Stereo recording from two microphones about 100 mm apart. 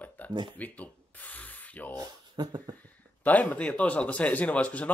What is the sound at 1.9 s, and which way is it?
Speech, 45° right (ahead or behind).